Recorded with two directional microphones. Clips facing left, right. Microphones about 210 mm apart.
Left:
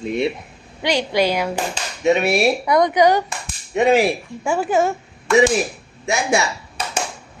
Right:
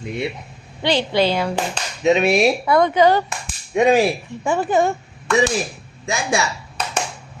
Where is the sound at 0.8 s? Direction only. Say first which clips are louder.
Right 1 dB; 10° left (ahead or behind).